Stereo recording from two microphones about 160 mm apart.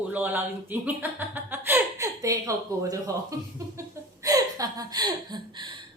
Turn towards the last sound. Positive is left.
turn(degrees=-25)  # may be behind; listen again after turning